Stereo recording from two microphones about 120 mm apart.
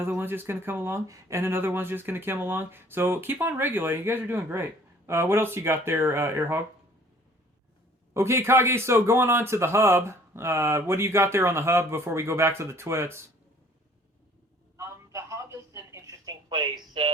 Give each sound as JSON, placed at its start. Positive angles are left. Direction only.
{"t": 0.0, "sound": "speech", "side_deg": -20}
{"t": 8.1, "sound": "speech", "side_deg": -20}
{"t": 14.8, "sound": "a sound", "side_deg": -25}